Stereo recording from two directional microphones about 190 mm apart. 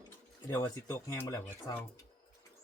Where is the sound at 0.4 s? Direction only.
15° left (ahead or behind).